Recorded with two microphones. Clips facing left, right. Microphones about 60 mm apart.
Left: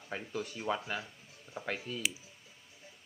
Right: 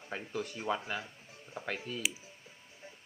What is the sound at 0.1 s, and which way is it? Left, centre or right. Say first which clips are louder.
Speech: even; centre.